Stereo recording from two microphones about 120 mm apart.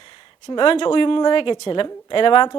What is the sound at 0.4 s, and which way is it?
Speech, 45° left (ahead or behind).